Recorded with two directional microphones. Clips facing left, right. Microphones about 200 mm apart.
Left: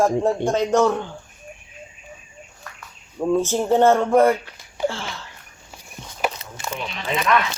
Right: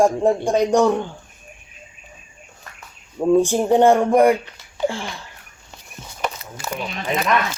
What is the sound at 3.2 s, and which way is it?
Speech, 15° right (ahead or behind).